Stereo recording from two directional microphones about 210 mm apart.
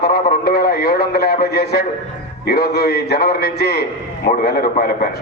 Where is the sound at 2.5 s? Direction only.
50° left (ahead or behind).